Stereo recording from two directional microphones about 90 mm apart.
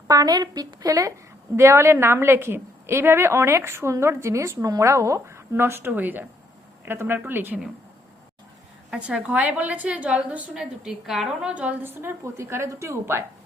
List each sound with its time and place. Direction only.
0.1 s a woman's voice: 45° right (ahead or behind); by 7.6 s 20° right (ahead or behind)
8.9 s a woman's voice: 10° right (ahead or behind); by 13.2 s 30° right (ahead or behind)